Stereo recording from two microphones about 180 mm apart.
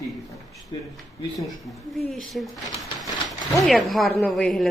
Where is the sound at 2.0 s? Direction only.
Centre (ahead or behind).